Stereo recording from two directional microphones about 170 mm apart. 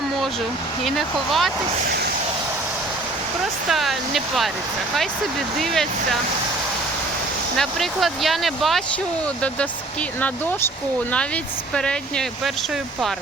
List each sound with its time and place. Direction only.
0.9 s speech: centre (ahead or behind)
1.9 s a sound: 70° right (ahead or behind)
3.7 s speech: centre (ahead or behind)
5.5 s speech: centre (ahead or behind)
7.5 s speech: centre (ahead or behind)
11.7 s speech: 5° left (ahead or behind)